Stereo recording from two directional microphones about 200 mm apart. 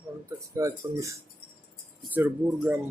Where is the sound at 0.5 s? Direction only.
15° right (ahead or behind).